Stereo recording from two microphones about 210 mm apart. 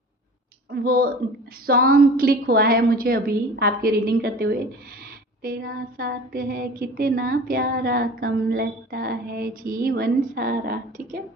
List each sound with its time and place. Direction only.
0.7 s a woman's voice: 45° right (ahead or behind)